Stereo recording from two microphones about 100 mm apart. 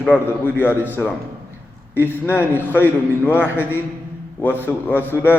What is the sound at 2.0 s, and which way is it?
A man's voice, 20° left (ahead or behind).